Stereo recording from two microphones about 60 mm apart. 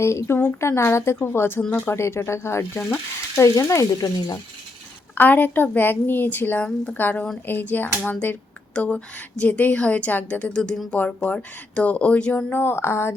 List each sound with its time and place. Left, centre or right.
0.0 s speech: left
0.3 s a woman's voice: left
0.8 s speech: left
3.7 s speech: left
5.1 s a woman's voice: left
12.5 s speech: left